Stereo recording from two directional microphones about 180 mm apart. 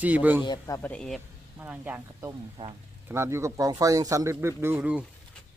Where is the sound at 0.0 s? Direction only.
10° right (ahead or behind).